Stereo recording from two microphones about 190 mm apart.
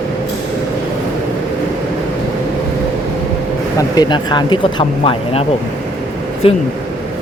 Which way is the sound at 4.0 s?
25° left (ahead or behind).